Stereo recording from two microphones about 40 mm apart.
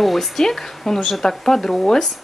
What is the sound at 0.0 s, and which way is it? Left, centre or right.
Speech, centre.